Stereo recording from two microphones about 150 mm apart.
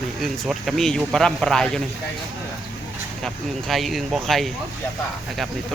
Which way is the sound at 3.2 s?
Centre (ahead or behind).